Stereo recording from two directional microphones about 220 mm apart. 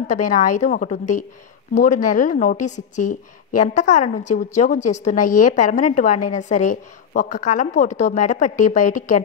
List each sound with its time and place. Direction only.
0.0 s a woman's voice: 35° left (ahead or behind)